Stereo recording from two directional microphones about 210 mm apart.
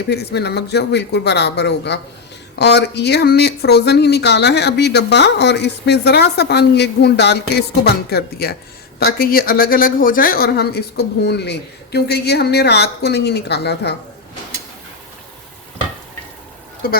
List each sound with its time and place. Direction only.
0.1 s speech: 50° left (ahead or behind)